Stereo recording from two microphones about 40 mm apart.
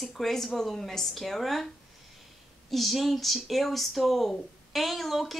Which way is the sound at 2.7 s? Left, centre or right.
Centre.